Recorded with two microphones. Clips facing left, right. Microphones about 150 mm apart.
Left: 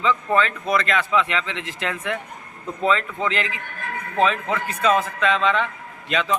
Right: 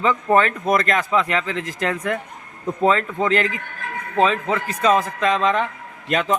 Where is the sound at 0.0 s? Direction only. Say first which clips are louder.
Right 3 dB; 45° right (ahead or behind).